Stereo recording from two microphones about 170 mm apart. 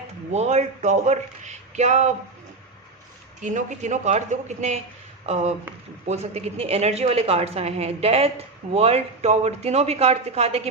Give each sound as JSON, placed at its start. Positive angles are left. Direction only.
{"t": 0.3, "sound": "speech", "side_deg": -40}
{"t": 3.4, "sound": "a woman's voice", "side_deg": -45}